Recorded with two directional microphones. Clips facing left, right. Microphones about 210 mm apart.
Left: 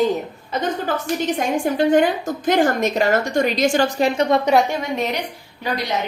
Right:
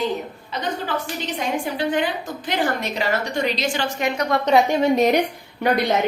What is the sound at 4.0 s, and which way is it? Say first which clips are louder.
Speech: left 2 dB; 30° left (ahead or behind).